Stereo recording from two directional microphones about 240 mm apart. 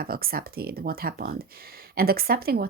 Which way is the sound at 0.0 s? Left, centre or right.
Right.